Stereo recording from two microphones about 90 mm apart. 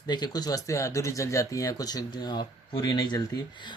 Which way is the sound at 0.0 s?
50° left (ahead or behind).